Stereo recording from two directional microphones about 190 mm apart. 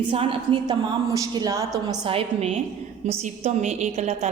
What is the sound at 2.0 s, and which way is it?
A woman's voice, 30° right (ahead or behind).